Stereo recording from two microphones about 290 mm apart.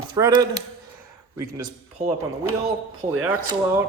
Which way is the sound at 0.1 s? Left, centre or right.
Centre.